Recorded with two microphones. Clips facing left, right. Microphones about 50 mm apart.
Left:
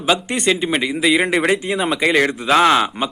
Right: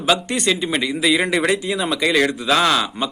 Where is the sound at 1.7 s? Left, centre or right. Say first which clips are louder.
Left 2 dB; centre.